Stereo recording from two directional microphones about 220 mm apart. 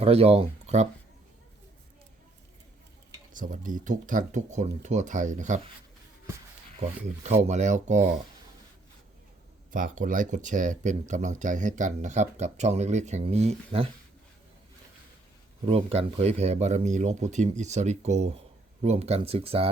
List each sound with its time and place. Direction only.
0.0 s speech: 25° right (ahead or behind)
3.3 s speech: 35° right (ahead or behind)
6.7 s speech: 30° right (ahead or behind)
9.7 s speech: 35° right (ahead or behind)
15.6 s speech: 25° right (ahead or behind)